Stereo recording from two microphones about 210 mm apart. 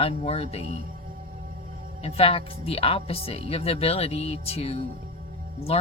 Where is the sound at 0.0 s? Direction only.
30° left (ahead or behind).